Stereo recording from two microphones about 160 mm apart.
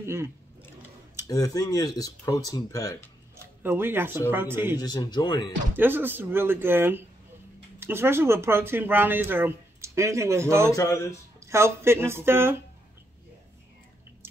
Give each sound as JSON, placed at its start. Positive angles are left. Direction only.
{"t": 0.0, "sound": "speech", "side_deg": -15}
{"t": 1.2, "sound": "speech", "side_deg": 20}
{"t": 3.6, "sound": "speech", "side_deg": -15}
{"t": 4.7, "sound": "speech", "side_deg": 25}
{"t": 5.8, "sound": "speech", "side_deg": -15}
{"t": 10.8, "sound": "speech", "side_deg": 20}
{"t": 11.3, "sound": "speech", "side_deg": -15}